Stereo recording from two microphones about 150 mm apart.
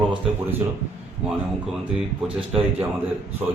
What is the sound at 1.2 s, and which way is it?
Speech, 5° right (ahead or behind).